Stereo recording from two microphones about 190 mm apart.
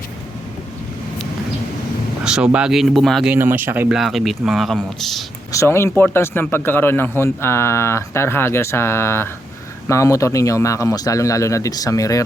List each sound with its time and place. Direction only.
2.2 s speech: 5° right (ahead or behind)
3.3 s speech: 10° right (ahead or behind)
5.5 s speech: 15° left (ahead or behind)